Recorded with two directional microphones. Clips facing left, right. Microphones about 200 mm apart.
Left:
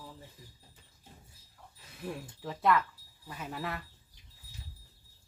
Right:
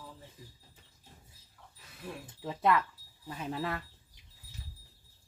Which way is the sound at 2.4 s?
20° right (ahead or behind).